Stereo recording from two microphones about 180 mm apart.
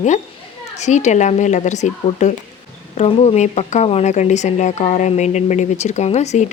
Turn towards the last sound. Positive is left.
turn(degrees=40)  # may be behind; listen again after turning